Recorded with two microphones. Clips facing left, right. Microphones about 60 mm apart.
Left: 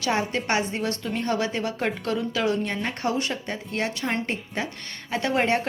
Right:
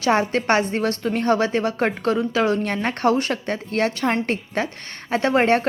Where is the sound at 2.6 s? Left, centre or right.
Right.